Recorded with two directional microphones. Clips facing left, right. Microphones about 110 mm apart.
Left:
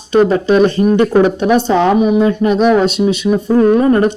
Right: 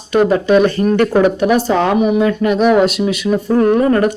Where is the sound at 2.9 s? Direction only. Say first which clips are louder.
Left 3 dB; 25° left (ahead or behind).